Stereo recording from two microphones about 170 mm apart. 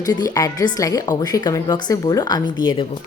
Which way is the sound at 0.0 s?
20° left (ahead or behind).